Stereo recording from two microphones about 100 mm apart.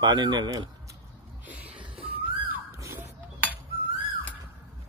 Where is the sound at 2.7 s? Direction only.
30° right (ahead or behind).